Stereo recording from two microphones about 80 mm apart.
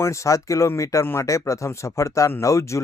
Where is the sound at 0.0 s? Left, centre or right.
Left.